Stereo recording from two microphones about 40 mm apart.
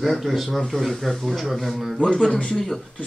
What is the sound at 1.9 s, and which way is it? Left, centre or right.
Speech, centre.